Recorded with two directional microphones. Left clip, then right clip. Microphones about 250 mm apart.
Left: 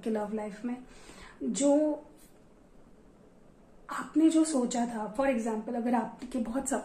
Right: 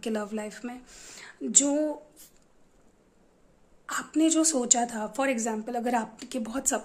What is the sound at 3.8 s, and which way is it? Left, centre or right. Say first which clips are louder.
A woman's voice: right 1 dB; right.